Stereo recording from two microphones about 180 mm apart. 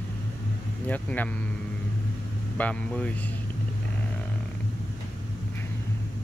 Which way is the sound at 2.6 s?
5° left (ahead or behind).